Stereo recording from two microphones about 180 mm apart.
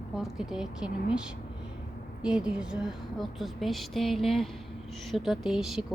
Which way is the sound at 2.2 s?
5° right (ahead or behind).